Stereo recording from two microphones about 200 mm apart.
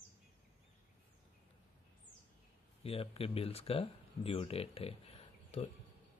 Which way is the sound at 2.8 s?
30° left (ahead or behind).